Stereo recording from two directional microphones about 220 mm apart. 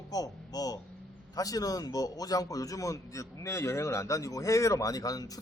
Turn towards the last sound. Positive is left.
turn(degrees=15)  # may be behind; listen again after turning